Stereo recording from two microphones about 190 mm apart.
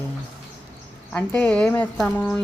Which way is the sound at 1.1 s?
10° left (ahead or behind).